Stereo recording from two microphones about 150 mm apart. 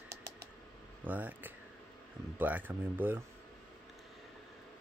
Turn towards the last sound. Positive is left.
turn(degrees=-15)  # may be behind; listen again after turning